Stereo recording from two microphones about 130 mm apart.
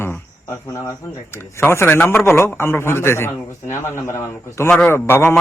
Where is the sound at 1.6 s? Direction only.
20° left (ahead or behind).